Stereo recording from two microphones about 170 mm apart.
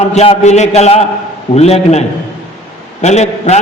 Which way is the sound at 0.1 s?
40° left (ahead or behind).